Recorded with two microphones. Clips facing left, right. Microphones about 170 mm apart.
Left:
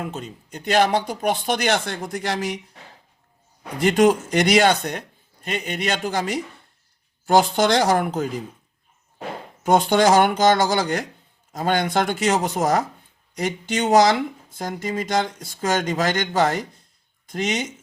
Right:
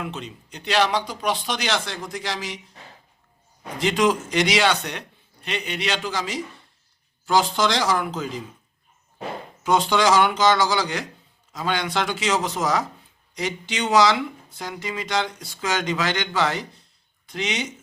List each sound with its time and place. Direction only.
0.0 s speech: 45° left (ahead or behind)
3.8 s speech: 55° left (ahead or behind)
9.6 s speech: 50° left (ahead or behind)